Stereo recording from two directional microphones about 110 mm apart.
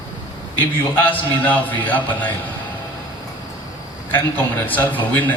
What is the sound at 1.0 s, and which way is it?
A man's voice, 15° left (ahead or behind).